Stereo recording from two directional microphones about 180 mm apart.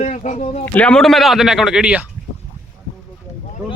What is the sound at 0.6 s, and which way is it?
Speech, 10° left (ahead or behind).